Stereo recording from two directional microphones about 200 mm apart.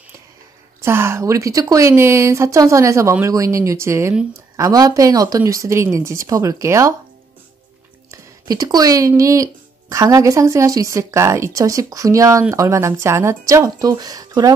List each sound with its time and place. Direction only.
0.8 s speech: 10° right (ahead or behind)
8.1 s speech: 20° right (ahead or behind)